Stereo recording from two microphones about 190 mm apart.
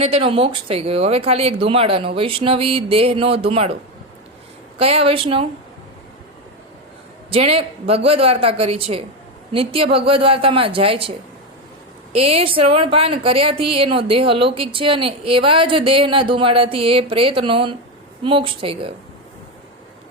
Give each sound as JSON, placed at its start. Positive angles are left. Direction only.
{"t": 0.0, "sound": "a woman's voice", "side_deg": -30}
{"t": 4.8, "sound": "a woman's voice", "side_deg": -30}
{"t": 7.3, "sound": "a woman's voice", "side_deg": -30}